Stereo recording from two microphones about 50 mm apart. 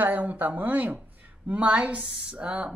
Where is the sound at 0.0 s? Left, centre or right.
Right.